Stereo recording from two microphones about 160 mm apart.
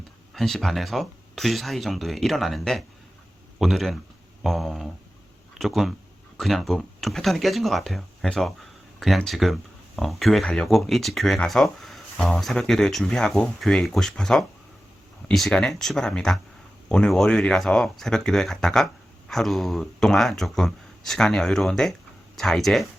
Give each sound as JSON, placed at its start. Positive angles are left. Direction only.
{"t": 0.3, "sound": "speech", "side_deg": 0}